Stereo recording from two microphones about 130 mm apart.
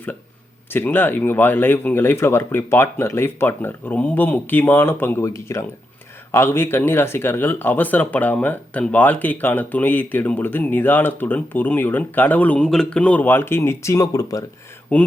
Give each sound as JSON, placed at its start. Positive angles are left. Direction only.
{"t": 0.7, "sound": "speech", "side_deg": 15}
{"t": 14.9, "sound": "speech", "side_deg": 15}